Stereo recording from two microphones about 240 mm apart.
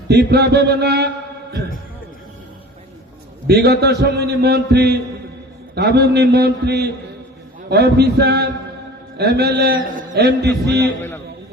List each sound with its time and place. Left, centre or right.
0.1 s a man's voice: right
3.4 s a man's voice: right
10.8 s a man's voice: centre